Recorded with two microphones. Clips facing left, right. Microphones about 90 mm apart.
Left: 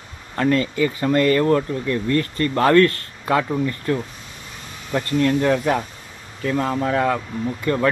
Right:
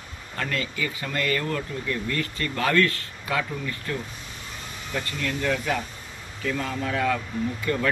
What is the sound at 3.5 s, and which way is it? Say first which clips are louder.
Speech: left 9 dB; 30° left (ahead or behind).